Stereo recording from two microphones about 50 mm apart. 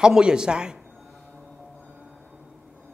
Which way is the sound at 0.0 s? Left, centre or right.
Centre.